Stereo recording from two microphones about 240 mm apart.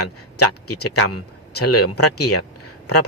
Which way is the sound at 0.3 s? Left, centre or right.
Left.